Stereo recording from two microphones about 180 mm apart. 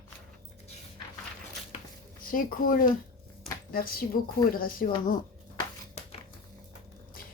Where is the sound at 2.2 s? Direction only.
50° left (ahead or behind).